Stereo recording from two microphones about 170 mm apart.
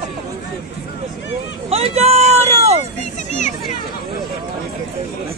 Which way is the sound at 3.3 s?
45° left (ahead or behind).